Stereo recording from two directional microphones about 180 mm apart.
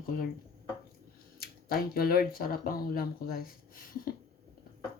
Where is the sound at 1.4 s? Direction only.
55° left (ahead or behind).